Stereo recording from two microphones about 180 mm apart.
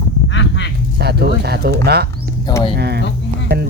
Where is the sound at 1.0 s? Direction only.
65° right (ahead or behind).